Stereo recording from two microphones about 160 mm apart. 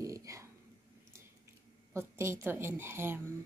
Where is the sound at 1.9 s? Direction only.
15° right (ahead or behind).